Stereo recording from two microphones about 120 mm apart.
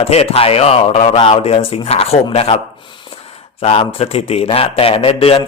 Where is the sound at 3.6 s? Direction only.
60° left (ahead or behind).